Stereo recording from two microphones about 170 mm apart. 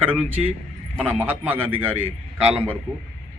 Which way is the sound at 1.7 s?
35° right (ahead or behind).